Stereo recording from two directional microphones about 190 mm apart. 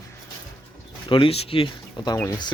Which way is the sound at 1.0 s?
25° left (ahead or behind).